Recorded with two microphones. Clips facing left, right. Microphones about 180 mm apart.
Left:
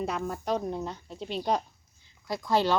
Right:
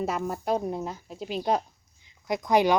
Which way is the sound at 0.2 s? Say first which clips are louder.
Right 2 dB; 10° right (ahead or behind).